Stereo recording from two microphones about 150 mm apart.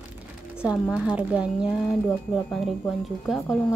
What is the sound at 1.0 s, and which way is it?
A woman's voice, 5° right (ahead or behind).